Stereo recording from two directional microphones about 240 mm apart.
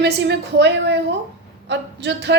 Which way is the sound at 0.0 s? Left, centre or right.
Right.